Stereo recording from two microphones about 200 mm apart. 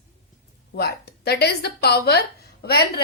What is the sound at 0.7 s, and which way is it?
A woman's voice, 55° left (ahead or behind).